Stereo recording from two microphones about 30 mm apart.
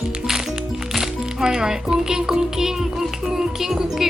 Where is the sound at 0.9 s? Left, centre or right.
Centre.